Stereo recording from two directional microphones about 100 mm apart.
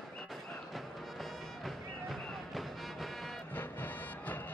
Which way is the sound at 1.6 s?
Centre (ahead or behind).